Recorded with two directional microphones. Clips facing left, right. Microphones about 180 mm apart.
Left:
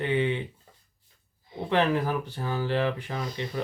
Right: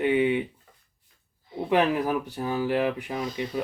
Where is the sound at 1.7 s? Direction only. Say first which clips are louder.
Right 2 dB; 10° right (ahead or behind).